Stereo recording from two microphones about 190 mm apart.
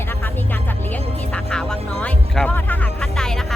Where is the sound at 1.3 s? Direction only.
5° left (ahead or behind).